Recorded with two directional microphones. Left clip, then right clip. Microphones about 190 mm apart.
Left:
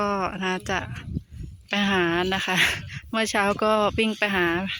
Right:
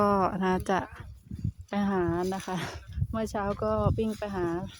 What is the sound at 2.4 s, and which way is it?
Speech, centre (ahead or behind).